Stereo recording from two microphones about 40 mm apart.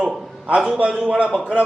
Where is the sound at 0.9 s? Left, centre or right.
Right.